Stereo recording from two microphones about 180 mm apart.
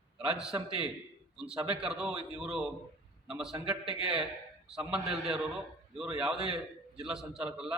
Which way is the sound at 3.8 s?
30° right (ahead or behind).